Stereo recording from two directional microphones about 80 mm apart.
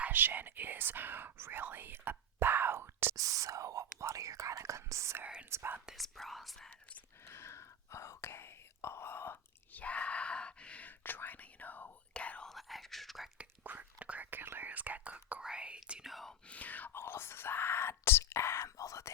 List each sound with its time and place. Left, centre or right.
0.0 s speech: right
3.2 s whispering: right
5.2 s whispering: centre
5.5 s whispering: right
5.8 s whispering: centre
7.3 s whispering: left
9.8 s whispering: centre
12.5 s whispering: centre
13.4 s whispering: centre
16.5 s whispering: centre; by 19.1 s left